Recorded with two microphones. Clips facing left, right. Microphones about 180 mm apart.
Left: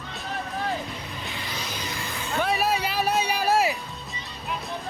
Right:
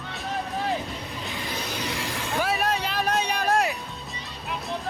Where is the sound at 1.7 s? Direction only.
75° right (ahead or behind).